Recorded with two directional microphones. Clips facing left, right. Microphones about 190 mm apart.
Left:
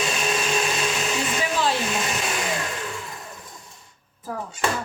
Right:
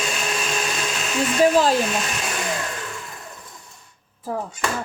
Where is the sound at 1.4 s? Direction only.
40° right (ahead or behind).